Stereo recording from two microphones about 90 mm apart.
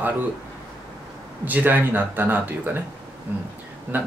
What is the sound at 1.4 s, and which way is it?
Speech, 20° right (ahead or behind).